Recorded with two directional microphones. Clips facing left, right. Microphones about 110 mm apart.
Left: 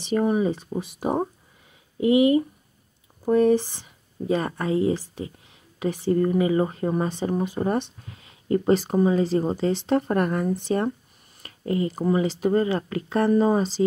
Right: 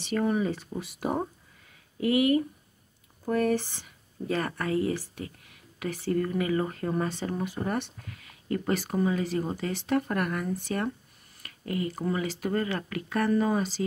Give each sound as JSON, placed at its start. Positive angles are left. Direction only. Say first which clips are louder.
{"t": 0.0, "sound": "speech", "louder": "left 5 dB", "side_deg": 20}